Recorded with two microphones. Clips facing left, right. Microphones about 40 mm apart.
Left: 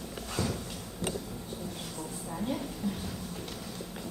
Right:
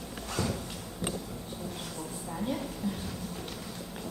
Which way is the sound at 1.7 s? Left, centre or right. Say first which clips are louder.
Right 1 dB; centre.